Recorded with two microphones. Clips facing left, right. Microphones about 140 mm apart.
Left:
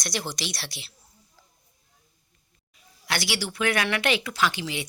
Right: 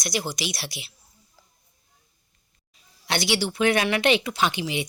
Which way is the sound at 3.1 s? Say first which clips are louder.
Right 5 dB; 25° right (ahead or behind).